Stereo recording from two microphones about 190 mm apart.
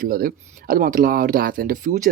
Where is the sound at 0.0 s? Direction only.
50° right (ahead or behind).